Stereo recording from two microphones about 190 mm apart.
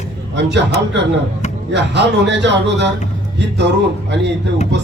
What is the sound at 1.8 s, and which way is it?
Speech, 65° right (ahead or behind).